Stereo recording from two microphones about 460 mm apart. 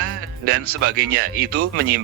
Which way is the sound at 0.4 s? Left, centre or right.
Right.